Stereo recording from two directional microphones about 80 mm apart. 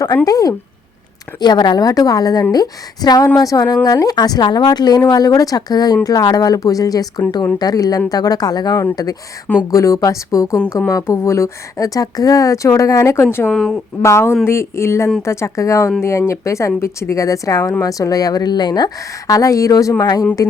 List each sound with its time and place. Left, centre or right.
0.3 s speech: left
1.4 s a woman's voice: left
9.6 s speech: left
13.2 s speech: left
13.5 s speech: centre
14.0 s speech: left
19.3 s speech: left
20.0 s a woman's voice: left